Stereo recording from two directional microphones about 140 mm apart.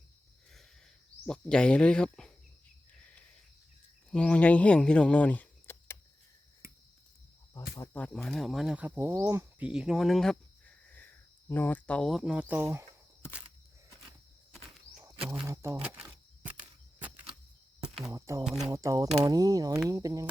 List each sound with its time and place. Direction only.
1.3 s speech: 5° left (ahead or behind)
4.1 s speech: 10° left (ahead or behind)
7.9 s speech: 5° left (ahead or behind); by 12.8 s 15° right (ahead or behind)
15.2 s a sound: 5° right (ahead or behind)
15.4 s speech: 20° right (ahead or behind)
15.8 s a sound: 10° right (ahead or behind)
18.1 s speech: 25° right (ahead or behind)